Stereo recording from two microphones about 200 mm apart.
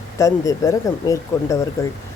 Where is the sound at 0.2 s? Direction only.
15° left (ahead or behind).